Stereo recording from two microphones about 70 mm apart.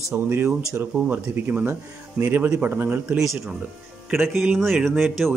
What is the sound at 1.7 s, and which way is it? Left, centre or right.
Speech, right.